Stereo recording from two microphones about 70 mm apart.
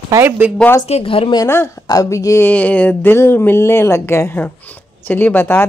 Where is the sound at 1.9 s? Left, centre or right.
Left.